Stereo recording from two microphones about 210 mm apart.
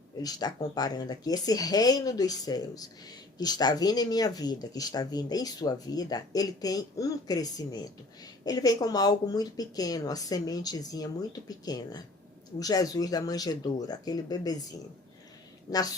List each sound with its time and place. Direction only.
0.2 s speech: 20° left (ahead or behind)
15.7 s speech: 20° left (ahead or behind)